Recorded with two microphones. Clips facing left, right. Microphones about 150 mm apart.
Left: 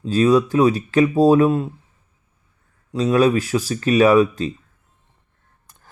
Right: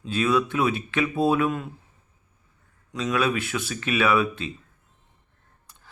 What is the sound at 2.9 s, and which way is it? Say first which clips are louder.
Speech: left 9 dB; 35° left (ahead or behind).